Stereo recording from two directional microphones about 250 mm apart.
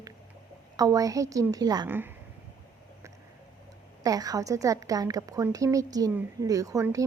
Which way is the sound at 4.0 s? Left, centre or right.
Centre.